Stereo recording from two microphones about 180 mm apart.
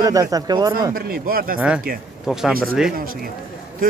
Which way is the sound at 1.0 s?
55° right (ahead or behind).